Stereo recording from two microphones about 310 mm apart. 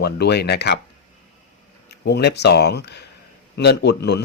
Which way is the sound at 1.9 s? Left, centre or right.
Left.